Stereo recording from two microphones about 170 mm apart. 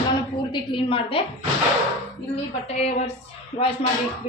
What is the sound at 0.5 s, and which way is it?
Speech, 30° left (ahead or behind).